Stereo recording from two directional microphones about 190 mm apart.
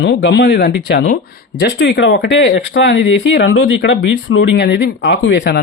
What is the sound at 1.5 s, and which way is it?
Speech, 70° left (ahead or behind).